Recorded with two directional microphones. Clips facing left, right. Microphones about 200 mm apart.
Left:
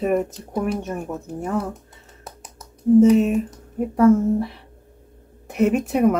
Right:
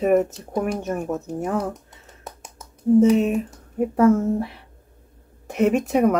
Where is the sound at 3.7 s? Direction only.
Centre (ahead or behind).